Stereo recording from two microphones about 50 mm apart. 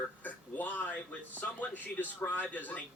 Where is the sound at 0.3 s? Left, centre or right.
Left.